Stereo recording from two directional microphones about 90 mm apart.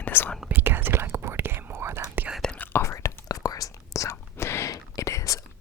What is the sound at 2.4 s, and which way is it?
Whispering, 10° left (ahead or behind).